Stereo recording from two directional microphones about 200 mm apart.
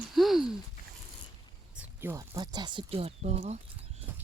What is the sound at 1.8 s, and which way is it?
Speech, 10° right (ahead or behind).